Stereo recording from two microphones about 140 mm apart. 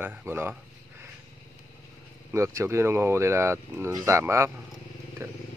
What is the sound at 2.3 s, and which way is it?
Speech, 20° right (ahead or behind).